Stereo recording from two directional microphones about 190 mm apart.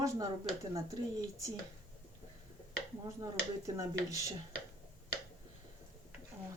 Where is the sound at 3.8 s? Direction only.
15° right (ahead or behind).